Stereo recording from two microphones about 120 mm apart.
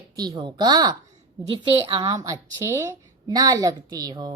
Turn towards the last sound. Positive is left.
turn(degrees=-35)  # may be behind; listen again after turning